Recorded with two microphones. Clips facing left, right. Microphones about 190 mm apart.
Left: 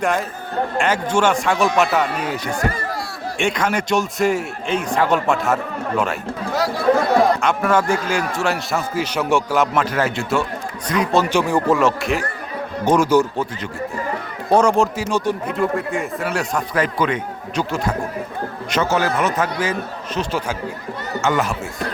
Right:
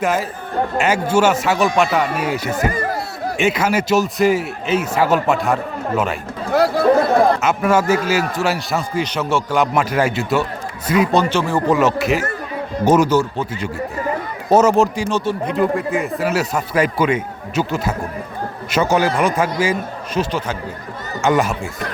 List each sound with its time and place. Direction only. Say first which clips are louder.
0.0 s speech: right 1 dB; 5° right (ahead or behind)
2.2 s a man's voice: right 3 dB; 10° right (ahead or behind)
6.5 s chatter: right 7 dB; 60° right (ahead or behind)
7.4 s speech: right 2 dB; 10° right (ahead or behind); by 9.6 s 10° left (ahead or behind)
9.7 s a man's voice: right 2 dB; 10° right (ahead or behind)
11.2 s speech: even; 15° left (ahead or behind)
11.7 s a man's voice: right 4 dB; centre (ahead or behind)
14.5 s a man's voice: right 2 dB; 5° right (ahead or behind)